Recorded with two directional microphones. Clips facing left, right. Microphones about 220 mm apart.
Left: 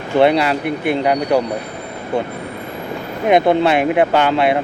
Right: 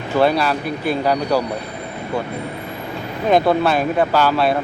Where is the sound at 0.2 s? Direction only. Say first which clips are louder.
Left 3 dB; 20° left (ahead or behind).